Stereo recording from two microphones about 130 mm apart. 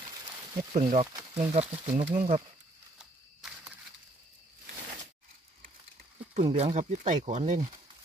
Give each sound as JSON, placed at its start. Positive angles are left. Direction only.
{"t": 0.0, "sound": "a sound", "side_deg": -30}
{"t": 0.7, "sound": "speech", "side_deg": -65}
{"t": 6.4, "sound": "speech", "side_deg": -50}